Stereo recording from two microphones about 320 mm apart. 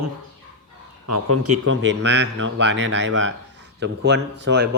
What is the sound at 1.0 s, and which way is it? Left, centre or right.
A man's voice, right.